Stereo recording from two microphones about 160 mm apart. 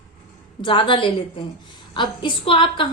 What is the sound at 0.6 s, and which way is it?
A woman's voice, 30° left (ahead or behind).